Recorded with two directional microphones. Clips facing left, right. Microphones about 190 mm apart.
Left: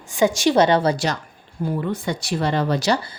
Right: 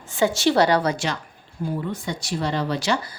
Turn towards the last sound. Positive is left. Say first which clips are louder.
# left 3 dB
turn(degrees=40)  # may be behind; listen again after turning